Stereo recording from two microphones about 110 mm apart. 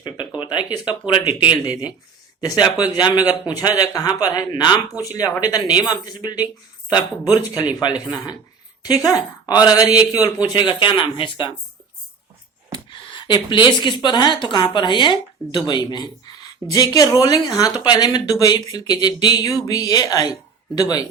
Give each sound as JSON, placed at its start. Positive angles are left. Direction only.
{"t": 0.3, "sound": "a sound", "side_deg": 45}
{"t": 1.0, "sound": "speech", "side_deg": 50}
{"t": 10.6, "sound": "speech", "side_deg": 50}
{"t": 12.7, "sound": "speech", "side_deg": 45}